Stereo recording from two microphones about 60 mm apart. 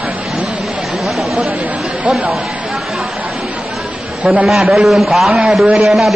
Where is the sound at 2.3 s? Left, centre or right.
Centre.